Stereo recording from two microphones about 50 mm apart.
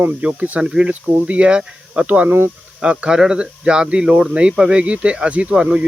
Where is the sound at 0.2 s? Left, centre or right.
Right.